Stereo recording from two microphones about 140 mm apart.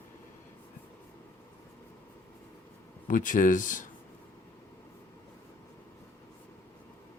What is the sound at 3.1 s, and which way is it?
Speech, 70° left (ahead or behind).